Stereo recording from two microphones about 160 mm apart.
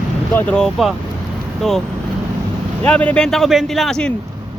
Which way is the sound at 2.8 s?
10° left (ahead or behind).